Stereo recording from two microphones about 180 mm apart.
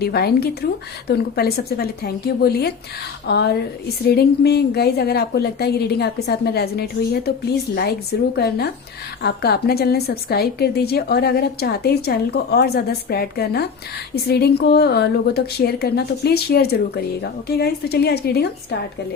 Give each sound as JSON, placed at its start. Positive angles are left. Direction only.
{"t": 0.0, "sound": "a woman's voice", "side_deg": 60}